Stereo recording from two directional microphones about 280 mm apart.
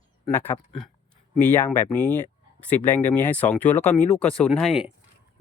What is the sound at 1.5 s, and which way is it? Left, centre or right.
Speech, centre.